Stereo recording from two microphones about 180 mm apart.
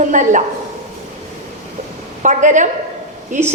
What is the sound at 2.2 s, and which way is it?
Speech, 45° right (ahead or behind).